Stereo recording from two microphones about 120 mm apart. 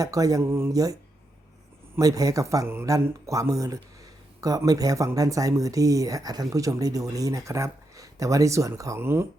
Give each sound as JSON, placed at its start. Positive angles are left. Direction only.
{"t": 0.0, "sound": "speech", "side_deg": -30}
{"t": 2.0, "sound": "speech", "side_deg": -30}